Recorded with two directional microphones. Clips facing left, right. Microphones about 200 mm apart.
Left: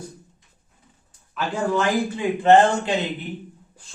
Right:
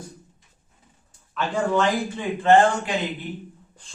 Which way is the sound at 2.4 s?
20° left (ahead or behind).